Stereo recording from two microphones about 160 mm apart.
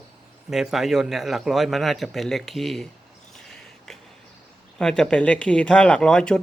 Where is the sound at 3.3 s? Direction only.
5° left (ahead or behind).